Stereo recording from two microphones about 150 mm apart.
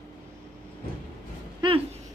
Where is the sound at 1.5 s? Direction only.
35° right (ahead or behind).